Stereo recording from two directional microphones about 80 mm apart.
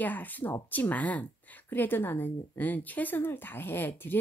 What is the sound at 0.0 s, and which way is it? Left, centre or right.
Speech, left.